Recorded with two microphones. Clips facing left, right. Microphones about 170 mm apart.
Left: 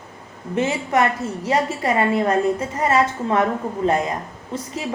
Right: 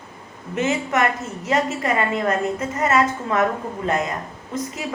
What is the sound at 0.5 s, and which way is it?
A woman's voice, 30° left (ahead or behind).